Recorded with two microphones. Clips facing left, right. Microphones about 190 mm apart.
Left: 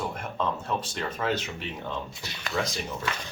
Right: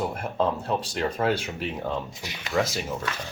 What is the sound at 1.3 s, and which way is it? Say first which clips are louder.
Speech: right 3 dB; 10° right (ahead or behind).